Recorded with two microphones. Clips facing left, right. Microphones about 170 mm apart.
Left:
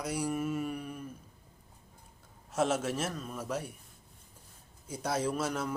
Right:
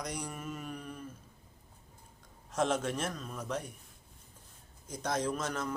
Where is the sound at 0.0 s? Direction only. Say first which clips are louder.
Left 7 dB; 5° left (ahead or behind).